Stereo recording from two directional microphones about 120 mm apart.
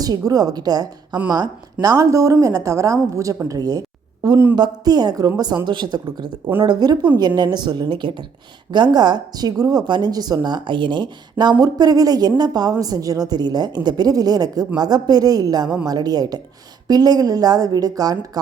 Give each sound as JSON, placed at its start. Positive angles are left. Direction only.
{"t": 0.0, "sound": "a woman's voice", "side_deg": -30}
{"t": 3.5, "sound": "a sound", "side_deg": -30}
{"t": 4.5, "sound": "speech", "side_deg": -35}